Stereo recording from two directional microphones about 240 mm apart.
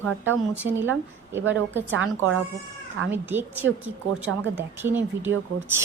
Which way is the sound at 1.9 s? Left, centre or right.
Right.